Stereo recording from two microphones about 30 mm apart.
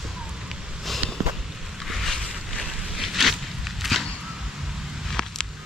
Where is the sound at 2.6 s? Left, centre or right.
Centre.